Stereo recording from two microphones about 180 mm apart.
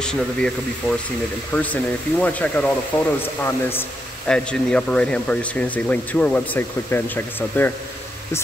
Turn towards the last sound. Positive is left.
turn(degrees=10)  # may be behind; listen again after turning